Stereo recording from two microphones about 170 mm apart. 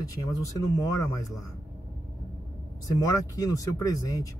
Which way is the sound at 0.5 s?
20° left (ahead or behind).